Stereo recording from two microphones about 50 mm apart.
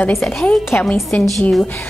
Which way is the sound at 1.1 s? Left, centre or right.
Left.